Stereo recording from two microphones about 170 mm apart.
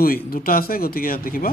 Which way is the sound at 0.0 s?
60° left (ahead or behind).